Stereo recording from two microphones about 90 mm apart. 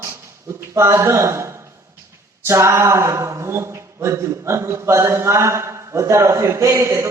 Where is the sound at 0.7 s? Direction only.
30° right (ahead or behind).